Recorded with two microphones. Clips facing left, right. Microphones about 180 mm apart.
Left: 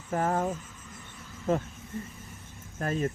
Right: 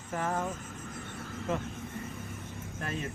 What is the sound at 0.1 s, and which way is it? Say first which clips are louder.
Speech: left 5 dB; 45° left (ahead or behind).